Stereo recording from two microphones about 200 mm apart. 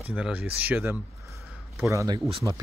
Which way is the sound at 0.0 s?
10° right (ahead or behind).